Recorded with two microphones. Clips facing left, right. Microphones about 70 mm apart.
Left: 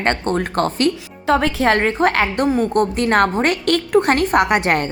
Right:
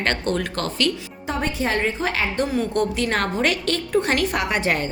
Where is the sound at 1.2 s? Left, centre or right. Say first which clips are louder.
Left 9 dB; left.